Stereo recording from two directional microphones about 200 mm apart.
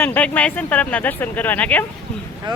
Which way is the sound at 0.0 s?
10° left (ahead or behind).